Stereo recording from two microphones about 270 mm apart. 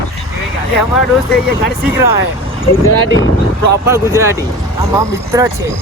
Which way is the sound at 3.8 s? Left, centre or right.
Centre.